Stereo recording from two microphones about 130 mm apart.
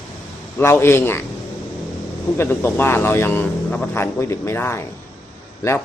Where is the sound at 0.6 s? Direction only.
20° left (ahead or behind).